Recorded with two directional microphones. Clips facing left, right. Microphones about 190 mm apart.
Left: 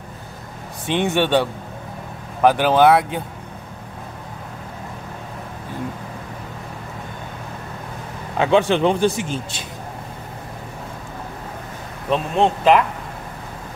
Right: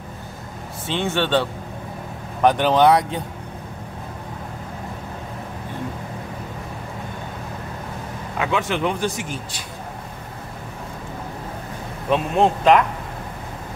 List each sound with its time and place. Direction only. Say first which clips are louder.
0.8 s speech: left 3 dB; 15° left (ahead or behind)
8.4 s a man's voice: left 6 dB; 30° left (ahead or behind)
12.1 s speech: even; centre (ahead or behind)